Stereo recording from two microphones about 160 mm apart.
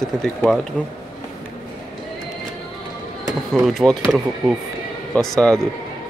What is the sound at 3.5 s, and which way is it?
Speech, centre (ahead or behind).